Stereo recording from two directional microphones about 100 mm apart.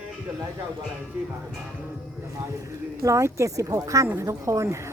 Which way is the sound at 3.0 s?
30° right (ahead or behind).